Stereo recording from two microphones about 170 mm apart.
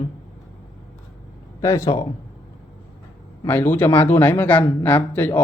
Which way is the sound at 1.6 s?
15° left (ahead or behind).